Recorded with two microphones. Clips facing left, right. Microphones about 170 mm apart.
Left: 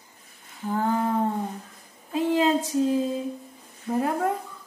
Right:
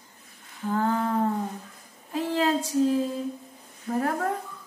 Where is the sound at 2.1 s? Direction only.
20° left (ahead or behind).